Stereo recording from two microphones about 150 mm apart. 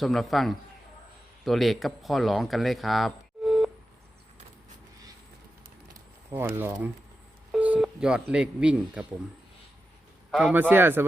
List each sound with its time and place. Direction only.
0.0 s a man's voice: centre (ahead or behind)
5.9 s a sound: 15° right (ahead or behind)
6.6 s a man's voice: 15° right (ahead or behind)
10.3 s a man's voice: 10° right (ahead or behind)